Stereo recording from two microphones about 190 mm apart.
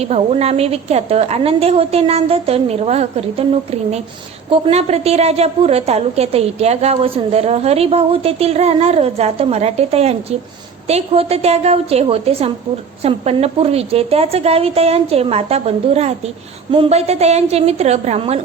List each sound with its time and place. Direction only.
0.0 s a woman's voice: 35° right (ahead or behind)